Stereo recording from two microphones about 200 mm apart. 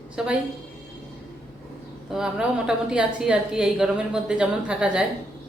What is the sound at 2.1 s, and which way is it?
A woman's voice, 5° right (ahead or behind).